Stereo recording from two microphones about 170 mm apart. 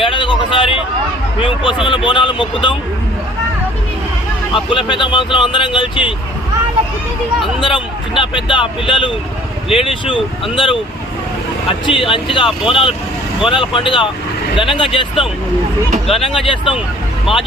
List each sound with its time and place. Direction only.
0.0 s a sound: 30° left (ahead or behind)
2.0 s speech: 30° left (ahead or behind)
4.5 s speech: 30° left (ahead or behind)
7.6 s speech: 30° left (ahead or behind)
11.9 s speech: 30° left (ahead or behind)
17.3 s speech: centre (ahead or behind)